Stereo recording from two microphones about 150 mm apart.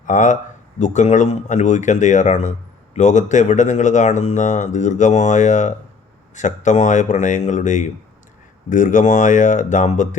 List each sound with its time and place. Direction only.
0.0 s speech: 60° left (ahead or behind)